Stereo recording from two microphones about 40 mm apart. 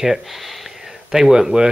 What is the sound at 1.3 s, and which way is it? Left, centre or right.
Speech, centre.